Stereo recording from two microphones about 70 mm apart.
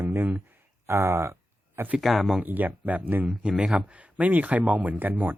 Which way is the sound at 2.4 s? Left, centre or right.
Right.